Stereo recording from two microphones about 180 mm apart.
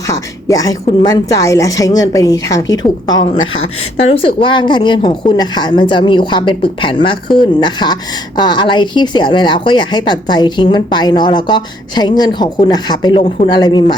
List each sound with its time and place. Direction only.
0.1 s a woman's voice: 20° left (ahead or behind)